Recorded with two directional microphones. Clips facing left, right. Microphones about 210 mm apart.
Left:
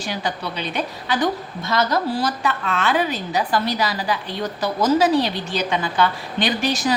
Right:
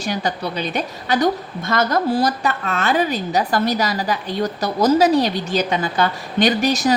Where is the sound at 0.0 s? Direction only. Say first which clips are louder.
Right 3 dB; 40° right (ahead or behind).